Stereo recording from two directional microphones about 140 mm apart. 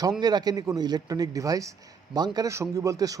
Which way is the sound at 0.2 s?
30° right (ahead or behind).